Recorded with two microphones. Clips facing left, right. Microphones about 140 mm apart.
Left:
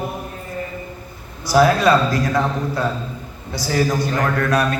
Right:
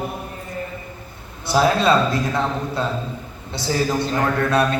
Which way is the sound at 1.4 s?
25° right (ahead or behind).